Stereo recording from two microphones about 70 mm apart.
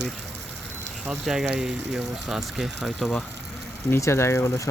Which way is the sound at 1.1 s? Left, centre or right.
Centre.